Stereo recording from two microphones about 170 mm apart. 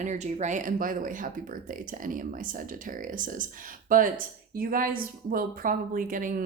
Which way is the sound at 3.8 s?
55° right (ahead or behind).